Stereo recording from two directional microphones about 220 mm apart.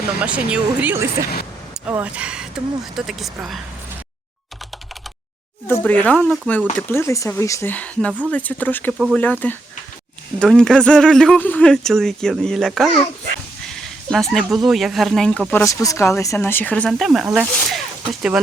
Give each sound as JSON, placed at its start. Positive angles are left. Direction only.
{"t": 0.2, "sound": "speech", "side_deg": -5}
{"t": 5.6, "sound": "speech", "side_deg": 10}
{"t": 6.9, "sound": "speech", "side_deg": 15}
{"t": 9.0, "sound": "speech", "side_deg": -5}
{"t": 9.2, "sound": "speech", "side_deg": 5}